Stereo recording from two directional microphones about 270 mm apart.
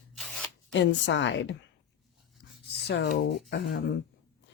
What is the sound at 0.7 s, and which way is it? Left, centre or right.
Speech, left.